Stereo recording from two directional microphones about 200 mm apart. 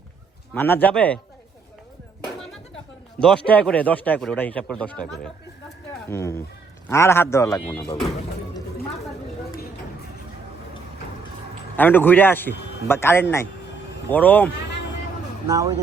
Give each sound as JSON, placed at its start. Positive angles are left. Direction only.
{"t": 0.5, "sound": "a man's voice", "side_deg": 10}
{"t": 3.2, "sound": "a man's voice", "side_deg": 5}
{"t": 11.8, "sound": "a man's voice", "side_deg": 10}
{"t": 15.4, "sound": "speech", "side_deg": -15}